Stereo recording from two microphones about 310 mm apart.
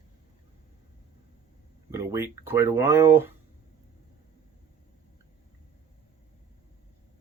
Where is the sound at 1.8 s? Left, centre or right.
Centre.